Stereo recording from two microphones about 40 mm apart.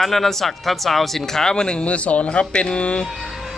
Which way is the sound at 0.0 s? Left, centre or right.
Centre.